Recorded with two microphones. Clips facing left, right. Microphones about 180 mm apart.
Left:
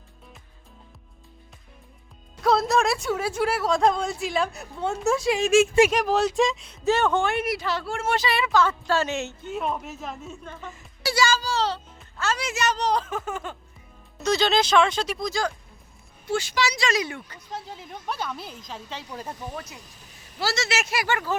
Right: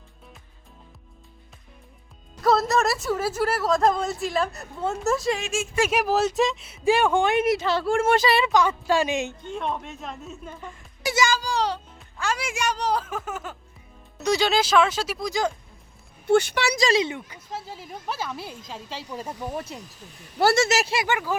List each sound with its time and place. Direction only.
2.4 s speech: centre (ahead or behind); by 7.9 s 25° right (ahead or behind)
7.9 s speech: 50° right (ahead or behind)
8.8 s speech: 15° right (ahead or behind)
9.4 s speech: 5° left (ahead or behind)
11.0 s a sound: 15° right (ahead or behind)
11.9 s speech: 10° right (ahead or behind)
16.2 s speech: 60° right (ahead or behind)
16.7 s speech: 35° right (ahead or behind)
17.0 s speech: 20° right (ahead or behind)
19.5 s speech: 30° right (ahead or behind)
20.4 s speech: 55° right (ahead or behind)
20.7 s speech: 30° right (ahead or behind)